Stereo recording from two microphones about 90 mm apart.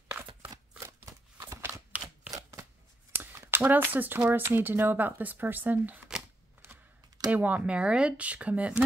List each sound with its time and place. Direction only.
0.7 s scissors: 30° right (ahead or behind)
1.9 s typewriter: 15° right (ahead or behind)
3.2 s speech: 25° right (ahead or behind)
7.2 s speech: 15° right (ahead or behind)